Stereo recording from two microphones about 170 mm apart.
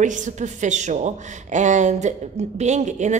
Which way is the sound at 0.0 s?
45° right (ahead or behind).